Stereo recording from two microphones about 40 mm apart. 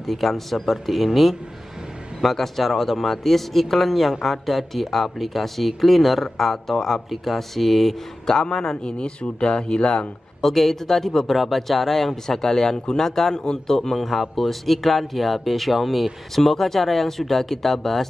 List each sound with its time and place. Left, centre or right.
0.0 s speech: centre
8.5 s speech: centre
10.4 s speech: centre